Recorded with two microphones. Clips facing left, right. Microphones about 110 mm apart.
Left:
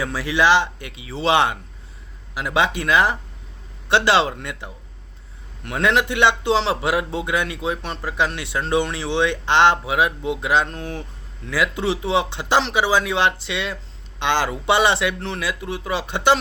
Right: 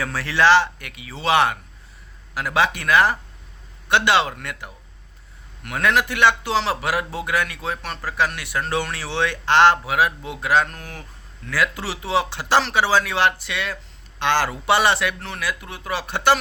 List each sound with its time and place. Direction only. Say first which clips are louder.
0.0 s a man's voice: even; 15° left (ahead or behind)